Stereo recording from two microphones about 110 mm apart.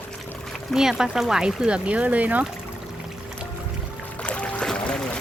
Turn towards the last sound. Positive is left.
turn(degrees=5)  # may be behind; listen again after turning